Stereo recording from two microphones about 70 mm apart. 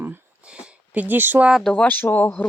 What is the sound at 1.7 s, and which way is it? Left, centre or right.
Speech, left.